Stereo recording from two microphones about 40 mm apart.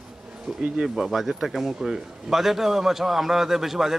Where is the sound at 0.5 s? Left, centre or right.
Centre.